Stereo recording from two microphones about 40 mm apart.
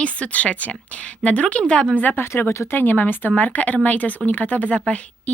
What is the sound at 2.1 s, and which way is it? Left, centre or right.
Speech, left.